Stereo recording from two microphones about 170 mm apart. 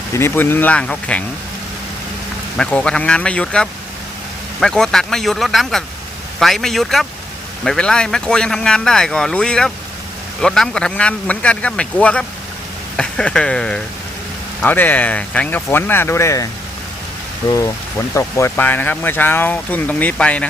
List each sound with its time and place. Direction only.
0.1 s speech: 15° left (ahead or behind)
2.6 s speech: 5° left (ahead or behind)
17.5 s speech: 20° left (ahead or behind)